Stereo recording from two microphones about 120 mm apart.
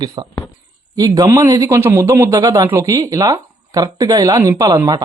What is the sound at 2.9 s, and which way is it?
Speech, 30° right (ahead or behind).